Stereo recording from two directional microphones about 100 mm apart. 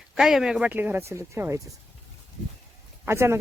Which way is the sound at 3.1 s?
25° right (ahead or behind).